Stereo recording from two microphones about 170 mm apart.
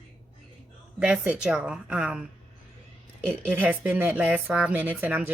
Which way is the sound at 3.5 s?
10° right (ahead or behind).